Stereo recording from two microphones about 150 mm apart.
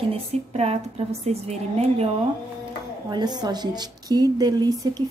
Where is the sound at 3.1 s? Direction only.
25° right (ahead or behind).